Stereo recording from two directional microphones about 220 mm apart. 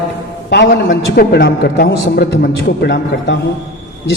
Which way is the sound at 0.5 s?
50° left (ahead or behind).